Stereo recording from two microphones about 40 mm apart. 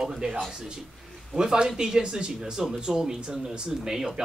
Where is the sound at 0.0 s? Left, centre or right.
Centre.